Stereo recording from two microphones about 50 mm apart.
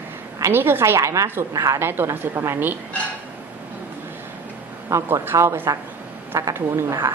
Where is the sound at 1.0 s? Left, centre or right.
Right.